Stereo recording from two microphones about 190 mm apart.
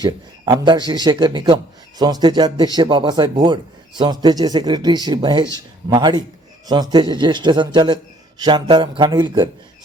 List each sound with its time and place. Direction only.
0.0 s a man's voice: 25° right (ahead or behind)